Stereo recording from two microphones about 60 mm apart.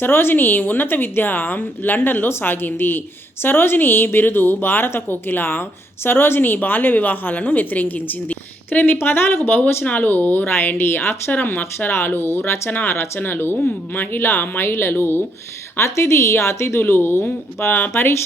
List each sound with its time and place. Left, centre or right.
0.0 s a woman's voice: left
15.8 s a woman's voice: left
16.8 s a woman's voice: left
17.9 s a woman's voice: left